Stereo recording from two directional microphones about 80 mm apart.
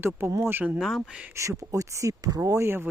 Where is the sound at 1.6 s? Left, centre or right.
Right.